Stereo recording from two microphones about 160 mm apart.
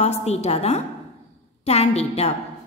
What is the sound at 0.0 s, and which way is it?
A woman's voice, 45° left (ahead or behind).